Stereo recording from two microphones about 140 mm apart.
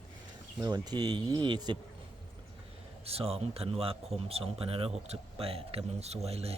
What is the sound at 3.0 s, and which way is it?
Speech, 45° right (ahead or behind).